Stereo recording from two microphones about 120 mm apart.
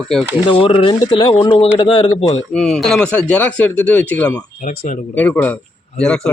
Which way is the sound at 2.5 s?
Centre (ahead or behind).